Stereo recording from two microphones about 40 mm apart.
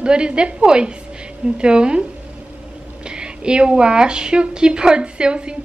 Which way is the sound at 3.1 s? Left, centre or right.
Right.